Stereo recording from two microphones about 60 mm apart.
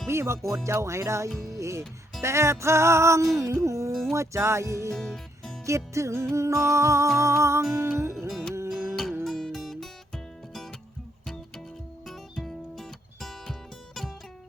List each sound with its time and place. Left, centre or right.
0.1 s speech: right
4.9 s music: centre
5.6 s speech: right
7.2 s music: right
8.3 s music: centre
12.0 s music: centre